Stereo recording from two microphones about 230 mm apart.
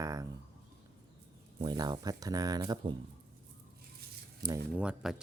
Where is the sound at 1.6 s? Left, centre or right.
Centre.